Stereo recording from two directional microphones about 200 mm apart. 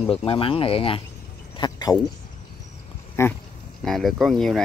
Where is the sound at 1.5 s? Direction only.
20° left (ahead or behind).